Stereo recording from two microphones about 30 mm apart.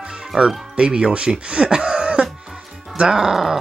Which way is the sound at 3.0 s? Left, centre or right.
Centre.